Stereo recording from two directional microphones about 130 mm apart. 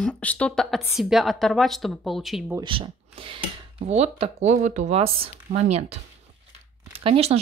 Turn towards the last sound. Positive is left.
turn(degrees=-50)  # may be behind; listen again after turning